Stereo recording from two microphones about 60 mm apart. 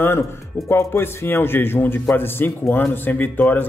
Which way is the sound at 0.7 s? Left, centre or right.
Left.